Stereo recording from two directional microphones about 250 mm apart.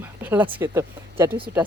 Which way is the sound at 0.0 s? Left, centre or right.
Centre.